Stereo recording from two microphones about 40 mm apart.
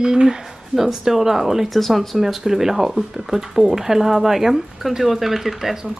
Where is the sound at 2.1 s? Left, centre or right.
Centre.